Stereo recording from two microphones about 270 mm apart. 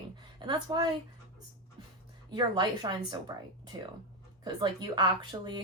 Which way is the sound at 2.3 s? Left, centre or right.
Centre.